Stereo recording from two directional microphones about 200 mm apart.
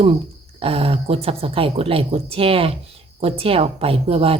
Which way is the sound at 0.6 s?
30° right (ahead or behind).